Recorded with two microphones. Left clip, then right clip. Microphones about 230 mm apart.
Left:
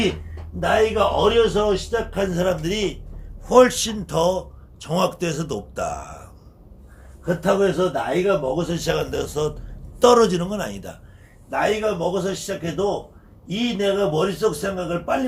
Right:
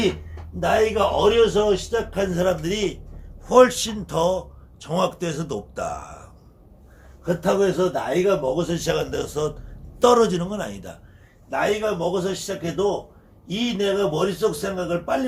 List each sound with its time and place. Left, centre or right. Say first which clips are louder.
0.6 s a man's voice: left 1 dB; centre
7.3 s a man's voice: left 1 dB; centre